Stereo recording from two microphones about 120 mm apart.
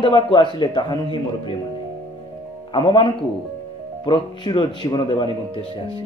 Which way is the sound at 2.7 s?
40° left (ahead or behind).